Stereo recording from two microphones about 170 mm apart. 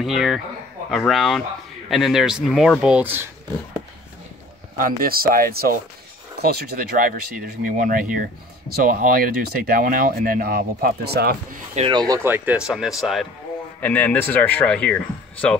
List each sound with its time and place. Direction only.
0.0 s speech: centre (ahead or behind)
4.7 s speech: 55° right (ahead or behind)
11.9 s speech: 20° right (ahead or behind); by 13.3 s centre (ahead or behind)
13.7 s speech: 10° left (ahead or behind)